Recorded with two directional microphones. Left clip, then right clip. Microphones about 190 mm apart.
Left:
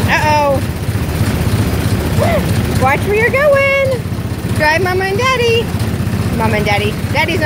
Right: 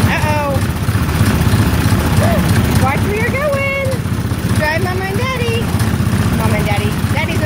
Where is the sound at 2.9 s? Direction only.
50° left (ahead or behind).